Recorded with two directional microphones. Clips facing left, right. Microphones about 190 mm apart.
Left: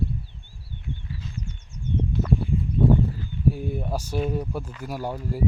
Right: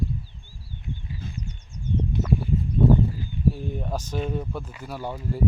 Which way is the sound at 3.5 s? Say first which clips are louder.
Left 2 dB; 10° left (ahead or behind).